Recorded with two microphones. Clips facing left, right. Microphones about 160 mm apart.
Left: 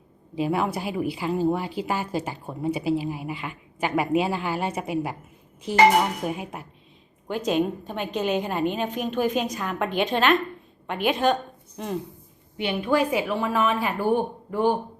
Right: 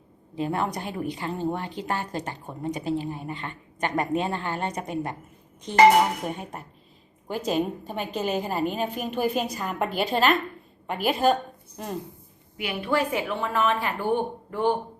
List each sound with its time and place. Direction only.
0.3 s a woman's voice: 10° left (ahead or behind)
6.2 s a woman's voice: 5° left (ahead or behind)
7.3 s a woman's voice: 5° right (ahead or behind)
12.5 s a woman's voice: 30° left (ahead or behind)
12.9 s a woman's voice: 15° left (ahead or behind)